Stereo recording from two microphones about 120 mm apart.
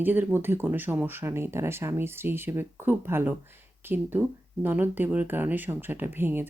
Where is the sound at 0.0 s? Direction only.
15° right (ahead or behind).